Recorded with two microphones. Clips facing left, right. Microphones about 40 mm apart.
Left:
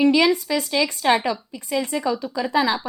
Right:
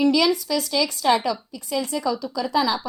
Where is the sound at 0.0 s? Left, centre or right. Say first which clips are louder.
Left 2 dB; left.